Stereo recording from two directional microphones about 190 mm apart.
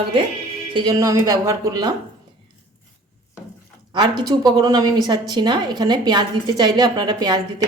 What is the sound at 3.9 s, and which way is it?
A woman's voice, 25° right (ahead or behind).